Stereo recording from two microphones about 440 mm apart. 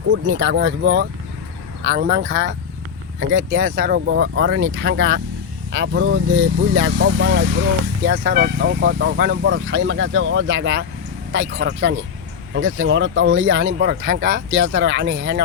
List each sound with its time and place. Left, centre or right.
0.1 s speech: right